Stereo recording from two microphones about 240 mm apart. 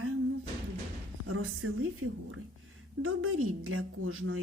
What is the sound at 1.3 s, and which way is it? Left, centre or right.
A woman's voice, right.